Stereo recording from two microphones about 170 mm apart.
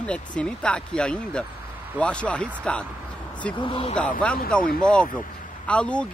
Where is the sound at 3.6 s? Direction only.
35° left (ahead or behind).